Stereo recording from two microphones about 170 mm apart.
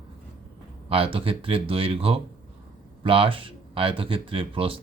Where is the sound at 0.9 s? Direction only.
35° right (ahead or behind).